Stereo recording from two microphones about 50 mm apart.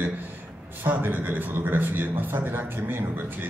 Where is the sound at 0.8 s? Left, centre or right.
Right.